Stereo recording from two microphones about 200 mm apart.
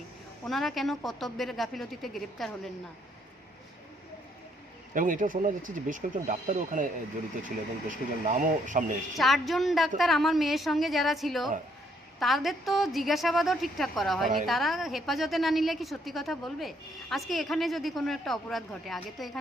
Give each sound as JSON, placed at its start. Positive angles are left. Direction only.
{"t": 0.4, "sound": "a woman's voice", "side_deg": 0}
{"t": 4.9, "sound": "speech", "side_deg": -40}
{"t": 9.1, "sound": "a woman's voice", "side_deg": 0}